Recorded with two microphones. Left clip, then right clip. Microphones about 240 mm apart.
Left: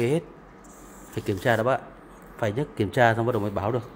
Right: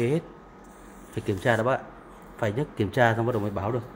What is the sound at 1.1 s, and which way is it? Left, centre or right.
Speech, centre.